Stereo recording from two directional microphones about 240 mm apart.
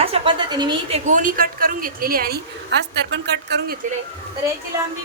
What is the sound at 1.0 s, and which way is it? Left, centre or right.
A woman's voice, right.